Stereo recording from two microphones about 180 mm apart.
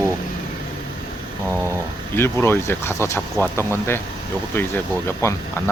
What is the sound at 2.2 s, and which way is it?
Speech, 15° left (ahead or behind).